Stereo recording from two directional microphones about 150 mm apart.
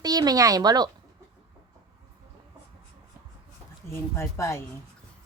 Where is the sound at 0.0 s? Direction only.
25° right (ahead or behind).